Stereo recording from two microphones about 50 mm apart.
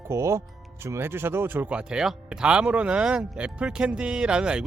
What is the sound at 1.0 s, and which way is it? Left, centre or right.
Speech, right.